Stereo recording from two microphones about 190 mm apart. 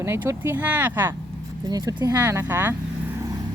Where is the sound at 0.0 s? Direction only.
15° right (ahead or behind).